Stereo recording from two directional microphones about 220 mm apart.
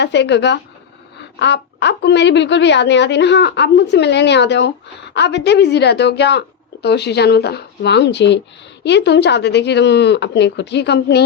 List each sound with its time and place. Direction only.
0.0 s a woman's voice: 50° left (ahead or behind)